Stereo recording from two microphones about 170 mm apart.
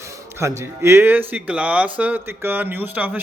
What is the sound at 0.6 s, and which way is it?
A man's voice, 15° right (ahead or behind).